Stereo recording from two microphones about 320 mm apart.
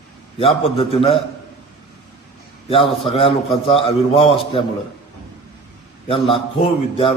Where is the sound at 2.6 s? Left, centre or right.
Centre.